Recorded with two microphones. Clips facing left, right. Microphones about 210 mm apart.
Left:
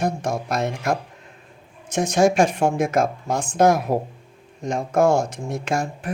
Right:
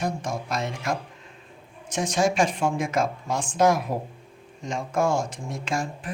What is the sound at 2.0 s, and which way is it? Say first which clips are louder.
Speech: left 5 dB; 60° left (ahead or behind).